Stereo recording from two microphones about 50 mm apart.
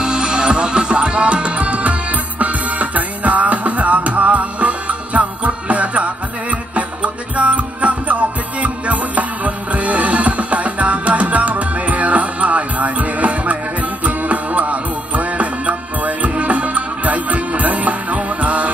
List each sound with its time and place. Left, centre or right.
0.0 s music: centre